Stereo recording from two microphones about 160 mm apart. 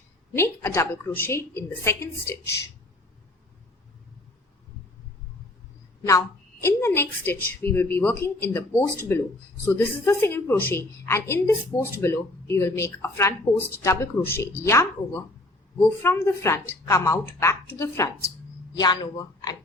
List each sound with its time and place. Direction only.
0.3 s a woman's voice: 15° left (ahead or behind)
6.0 s a woman's voice: 20° left (ahead or behind)